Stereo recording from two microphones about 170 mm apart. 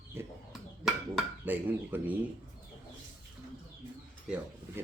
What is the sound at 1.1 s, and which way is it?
Speech, 10° right (ahead or behind).